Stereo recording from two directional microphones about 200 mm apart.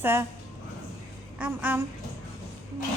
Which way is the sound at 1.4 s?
10° right (ahead or behind).